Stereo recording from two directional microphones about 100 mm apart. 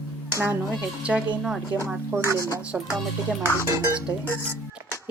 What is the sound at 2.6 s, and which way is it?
Speech, 10° right (ahead or behind).